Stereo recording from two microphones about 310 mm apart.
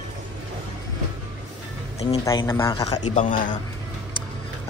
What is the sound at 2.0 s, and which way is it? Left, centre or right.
Speech, centre.